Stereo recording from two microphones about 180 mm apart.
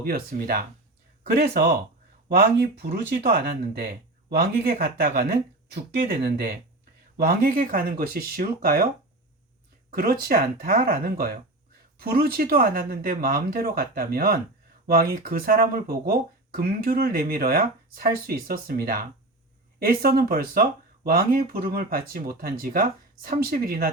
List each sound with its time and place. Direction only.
0.0 s speech: 55° right (ahead or behind)
9.9 s speech: 55° right (ahead or behind)